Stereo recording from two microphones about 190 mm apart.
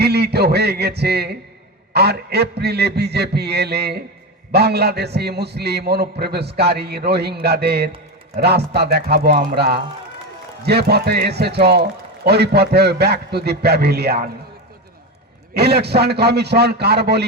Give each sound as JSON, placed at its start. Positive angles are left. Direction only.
{"t": 0.0, "sound": "a sound", "side_deg": -60}
{"t": 1.9, "sound": "a man's voice", "side_deg": -60}
{"t": 15.5, "sound": "a man's voice", "side_deg": -60}